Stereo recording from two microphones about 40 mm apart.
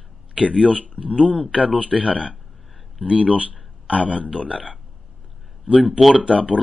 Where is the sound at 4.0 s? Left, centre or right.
Right.